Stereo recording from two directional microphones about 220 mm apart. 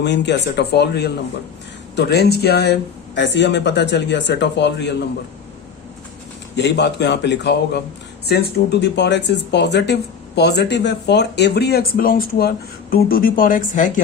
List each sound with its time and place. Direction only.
0.0 s speech: 50° left (ahead or behind)
6.6 s speech: 50° left (ahead or behind)